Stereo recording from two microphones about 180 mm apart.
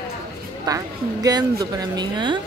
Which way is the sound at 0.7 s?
20° right (ahead or behind).